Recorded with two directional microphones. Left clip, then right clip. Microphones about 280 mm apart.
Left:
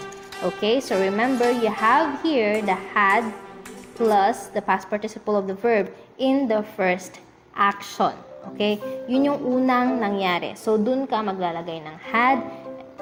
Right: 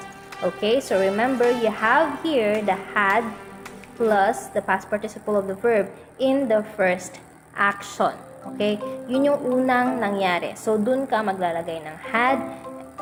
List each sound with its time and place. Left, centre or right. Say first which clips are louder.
0.4 s speech: right 1 dB; centre